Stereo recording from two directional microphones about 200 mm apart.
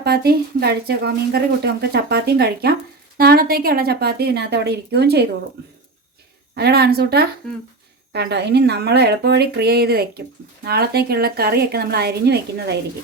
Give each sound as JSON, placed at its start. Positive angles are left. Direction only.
{"t": 0.0, "sound": "speech", "side_deg": -55}
{"t": 6.6, "sound": "speech", "side_deg": -50}